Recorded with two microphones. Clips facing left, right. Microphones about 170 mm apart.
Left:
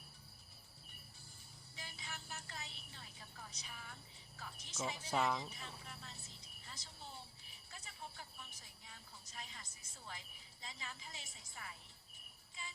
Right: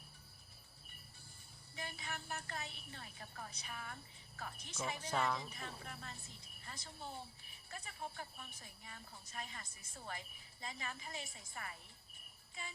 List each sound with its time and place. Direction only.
1.7 s a sound: 55° right (ahead or behind)
4.9 s speech: 10° left (ahead or behind)
5.5 s a woman's voice: 55° right (ahead or behind)
12.6 s child singing: 55° right (ahead or behind)